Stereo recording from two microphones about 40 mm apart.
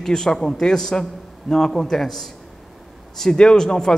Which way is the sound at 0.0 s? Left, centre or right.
Centre.